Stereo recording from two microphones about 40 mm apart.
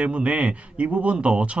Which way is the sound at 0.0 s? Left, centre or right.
Right.